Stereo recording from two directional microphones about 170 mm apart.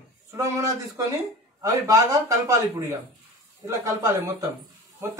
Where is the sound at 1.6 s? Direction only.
20° right (ahead or behind).